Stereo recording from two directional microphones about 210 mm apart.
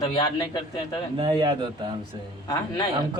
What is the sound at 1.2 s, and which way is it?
Speech, 20° right (ahead or behind).